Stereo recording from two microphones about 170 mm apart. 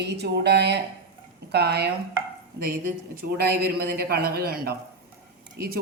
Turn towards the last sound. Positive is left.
turn(degrees=-70)  # may be behind; listen again after turning